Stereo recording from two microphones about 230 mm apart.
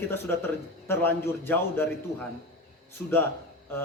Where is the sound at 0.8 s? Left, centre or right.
Centre.